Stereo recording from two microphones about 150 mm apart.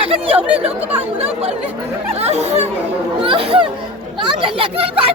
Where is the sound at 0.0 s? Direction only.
40° right (ahead or behind).